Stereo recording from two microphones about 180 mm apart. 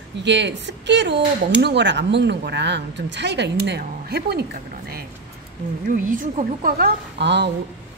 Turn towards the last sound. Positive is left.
turn(degrees=-75)  # may be behind; listen again after turning